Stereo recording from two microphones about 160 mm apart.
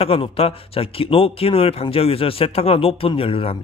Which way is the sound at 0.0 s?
35° left (ahead or behind).